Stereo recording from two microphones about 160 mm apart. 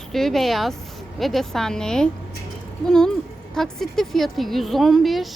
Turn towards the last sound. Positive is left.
turn(degrees=0)  # may be behind; listen again after turning